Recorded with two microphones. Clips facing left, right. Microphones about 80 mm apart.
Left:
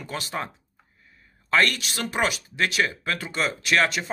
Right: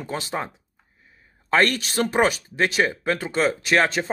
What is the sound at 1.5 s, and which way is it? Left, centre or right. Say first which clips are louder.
A man's voice: right 2 dB; right.